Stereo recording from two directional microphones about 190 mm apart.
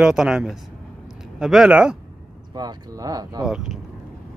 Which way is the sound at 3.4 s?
Centre (ahead or behind).